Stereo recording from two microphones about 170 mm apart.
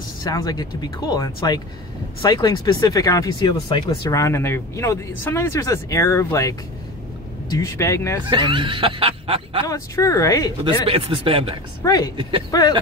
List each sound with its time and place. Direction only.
0.2 s speech: 20° left (ahead or behind)
8.3 s speech: 30° right (ahead or behind)
9.7 s speech: 20° left (ahead or behind)
10.6 s speech: 30° right (ahead or behind)
11.8 s speech: 20° left (ahead or behind)
12.2 s speech: 30° right (ahead or behind)
12.4 s speech: 20° left (ahead or behind)